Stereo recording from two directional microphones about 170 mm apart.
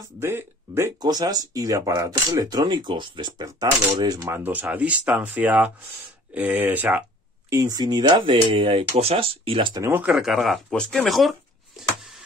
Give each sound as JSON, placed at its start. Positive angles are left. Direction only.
{"t": 0.2, "sound": "speech", "side_deg": -15}
{"t": 9.8, "sound": "speech", "side_deg": -10}